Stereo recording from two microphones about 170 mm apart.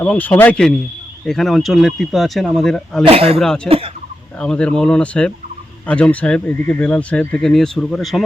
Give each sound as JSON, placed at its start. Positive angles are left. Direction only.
{"t": 0.0, "sound": "speech", "side_deg": 10}
{"t": 3.1, "sound": "speech", "side_deg": -35}
{"t": 3.3, "sound": "speech", "side_deg": 5}
{"t": 3.7, "sound": "speech", "side_deg": -35}
{"t": 4.4, "sound": "speech", "side_deg": 5}